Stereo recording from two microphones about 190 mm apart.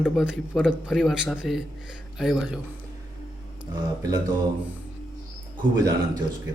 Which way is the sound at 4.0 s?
20° right (ahead or behind).